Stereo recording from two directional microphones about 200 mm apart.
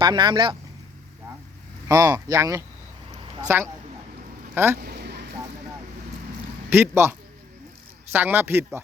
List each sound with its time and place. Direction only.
0.0 s speech: 20° right (ahead or behind)
1.9 s speech: 15° right (ahead or behind)
4.8 s a sound: 55° right (ahead or behind)
6.7 s speech: 10° right (ahead or behind)